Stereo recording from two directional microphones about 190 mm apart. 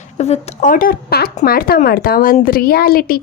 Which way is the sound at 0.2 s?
40° left (ahead or behind).